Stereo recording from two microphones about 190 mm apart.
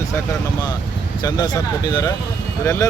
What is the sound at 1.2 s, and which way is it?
Speech, 20° left (ahead or behind).